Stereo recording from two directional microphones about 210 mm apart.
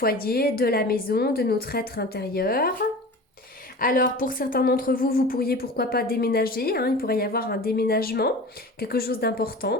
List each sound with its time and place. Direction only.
0.0 s a woman's voice: 45° left (ahead or behind)
3.8 s a woman's voice: 40° left (ahead or behind)